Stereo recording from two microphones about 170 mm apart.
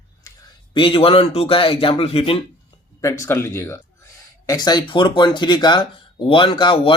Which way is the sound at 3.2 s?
15° left (ahead or behind).